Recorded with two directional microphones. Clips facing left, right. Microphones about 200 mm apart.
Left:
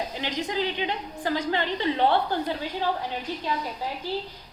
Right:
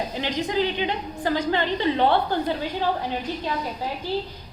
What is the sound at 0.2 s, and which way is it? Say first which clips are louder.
A woman's voice: right 5 dB; 25° right (ahead or behind).